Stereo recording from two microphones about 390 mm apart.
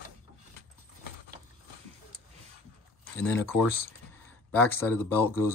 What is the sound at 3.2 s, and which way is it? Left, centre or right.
Speech, centre.